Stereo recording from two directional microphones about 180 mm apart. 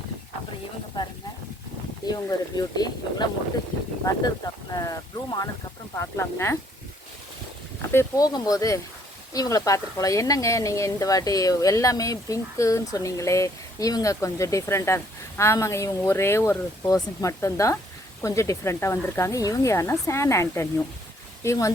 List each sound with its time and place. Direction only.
2.0 s speech: 20° left (ahead or behind)
4.7 s speech: 20° left (ahead or behind)
7.8 s speech: 15° left (ahead or behind)